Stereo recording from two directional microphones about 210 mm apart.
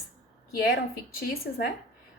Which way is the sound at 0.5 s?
45° left (ahead or behind).